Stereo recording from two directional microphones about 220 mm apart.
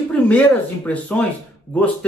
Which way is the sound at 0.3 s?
5° left (ahead or behind).